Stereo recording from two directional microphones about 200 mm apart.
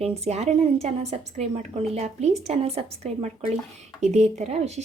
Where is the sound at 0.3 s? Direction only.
35° right (ahead or behind).